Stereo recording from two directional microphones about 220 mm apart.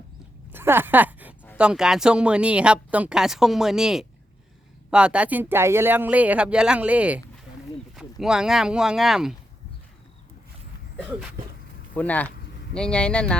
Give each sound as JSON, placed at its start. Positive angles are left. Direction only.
{"t": 0.5, "sound": "a sound", "side_deg": -10}
{"t": 1.5, "sound": "speech", "side_deg": -5}
{"t": 10.9, "sound": "speech", "side_deg": -5}
{"t": 11.9, "sound": "speech", "side_deg": 5}